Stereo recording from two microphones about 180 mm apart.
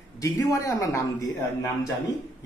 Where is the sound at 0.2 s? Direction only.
20° left (ahead or behind).